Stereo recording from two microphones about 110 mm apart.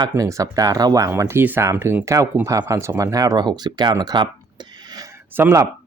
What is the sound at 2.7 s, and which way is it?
Speech, 20° right (ahead or behind).